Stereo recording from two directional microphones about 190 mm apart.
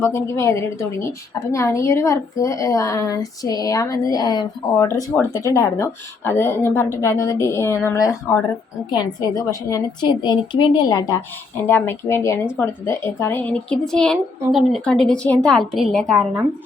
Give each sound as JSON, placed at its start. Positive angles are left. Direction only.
{"t": 0.0, "sound": "a woman's voice", "side_deg": 15}